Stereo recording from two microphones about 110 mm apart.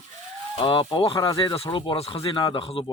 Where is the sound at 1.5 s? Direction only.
55° left (ahead or behind).